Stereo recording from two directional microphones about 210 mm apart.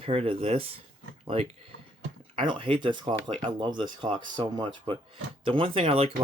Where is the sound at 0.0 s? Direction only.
25° right (ahead or behind).